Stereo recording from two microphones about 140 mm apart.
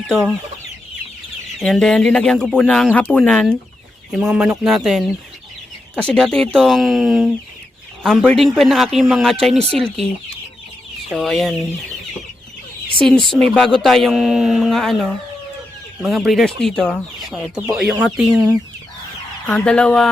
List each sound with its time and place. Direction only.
0.1 s speech: 5° right (ahead or behind)
1.5 s speech: centre (ahead or behind)
4.2 s speech: 5° right (ahead or behind)
11.1 s speech: centre (ahead or behind)
13.0 s speech: 5° left (ahead or behind)
16.0 s speech: centre (ahead or behind)
19.5 s speech: 10° left (ahead or behind)